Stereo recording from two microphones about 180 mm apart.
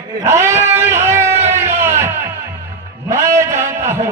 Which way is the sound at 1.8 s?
15° right (ahead or behind).